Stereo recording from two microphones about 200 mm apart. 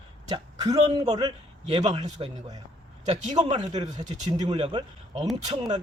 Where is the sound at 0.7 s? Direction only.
25° right (ahead or behind).